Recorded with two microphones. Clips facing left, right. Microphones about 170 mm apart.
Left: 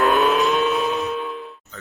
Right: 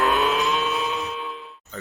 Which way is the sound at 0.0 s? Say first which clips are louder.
Left 4 dB; 50° left (ahead or behind).